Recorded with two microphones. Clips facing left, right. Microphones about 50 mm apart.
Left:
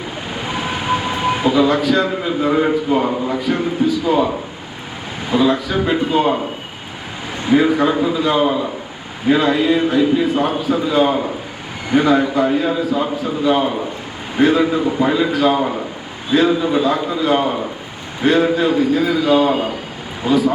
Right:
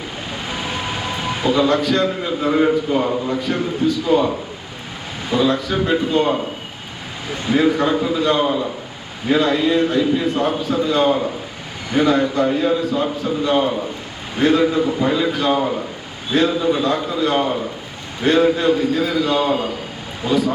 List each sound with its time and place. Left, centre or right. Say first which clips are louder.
0.4 s speech: left 5 dB; centre
5.3 s a man's voice: left 2 dB; centre
7.4 s a man's voice: left 2 dB; centre
12.9 s a man's voice: left 1 dB; centre
13.4 s a man's voice: left 2 dB; centre